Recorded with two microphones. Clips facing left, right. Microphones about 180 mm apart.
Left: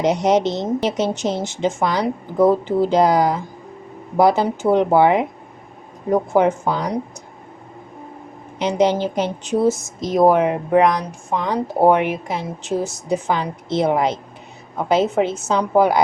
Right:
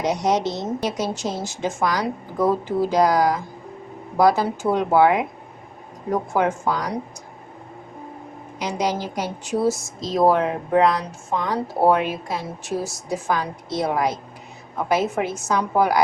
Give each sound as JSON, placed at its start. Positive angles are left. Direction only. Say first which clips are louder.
{"t": 0.0, "sound": "a woman's voice", "louder": "left 4 dB", "side_deg": 20}
{"t": 8.5, "sound": "a woman's voice", "louder": "left 7 dB", "side_deg": 25}